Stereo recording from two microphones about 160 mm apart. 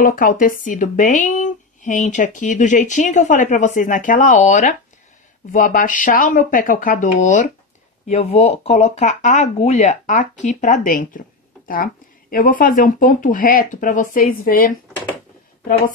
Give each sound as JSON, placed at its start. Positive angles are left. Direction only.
{"t": 0.0, "sound": "speech", "side_deg": 60}
{"t": 8.1, "sound": "speech", "side_deg": 40}